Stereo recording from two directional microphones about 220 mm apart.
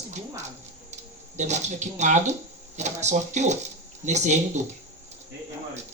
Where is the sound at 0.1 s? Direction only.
30° right (ahead or behind).